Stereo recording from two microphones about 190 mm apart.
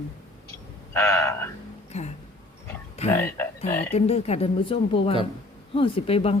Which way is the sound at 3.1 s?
10° left (ahead or behind).